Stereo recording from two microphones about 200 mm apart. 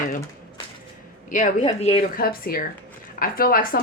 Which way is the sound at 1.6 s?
30° left (ahead or behind).